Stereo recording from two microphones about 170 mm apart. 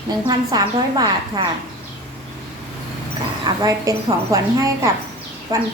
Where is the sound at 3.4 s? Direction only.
20° right (ahead or behind).